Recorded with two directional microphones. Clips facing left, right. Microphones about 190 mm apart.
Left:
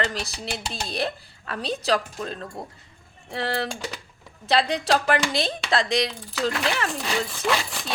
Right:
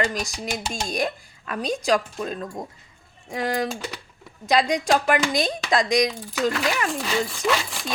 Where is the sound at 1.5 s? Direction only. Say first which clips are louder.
Right 2 dB; 15° right (ahead or behind).